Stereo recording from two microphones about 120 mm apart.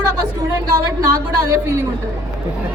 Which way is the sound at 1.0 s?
30° right (ahead or behind).